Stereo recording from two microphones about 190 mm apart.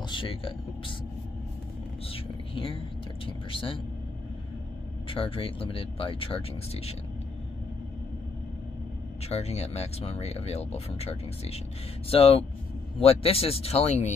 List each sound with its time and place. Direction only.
0.1 s speech: 30° left (ahead or behind)
2.1 s a sound: 30° left (ahead or behind)
3.3 s speech: 30° left (ahead or behind)
5.1 s speech: 30° left (ahead or behind)
9.3 s speech: 35° left (ahead or behind)